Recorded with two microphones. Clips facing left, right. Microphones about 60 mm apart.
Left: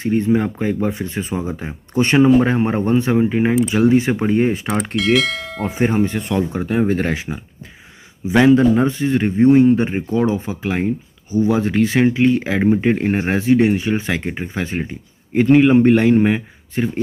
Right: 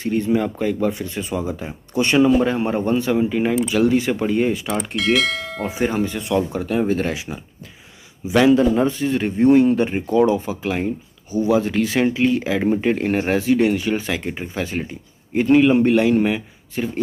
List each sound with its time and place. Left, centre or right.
0.0 s speech: left
4.9 s speech: centre
5.7 s speech: left